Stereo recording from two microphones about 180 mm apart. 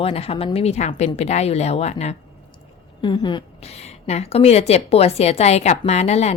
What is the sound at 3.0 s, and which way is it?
Speech, 25° left (ahead or behind).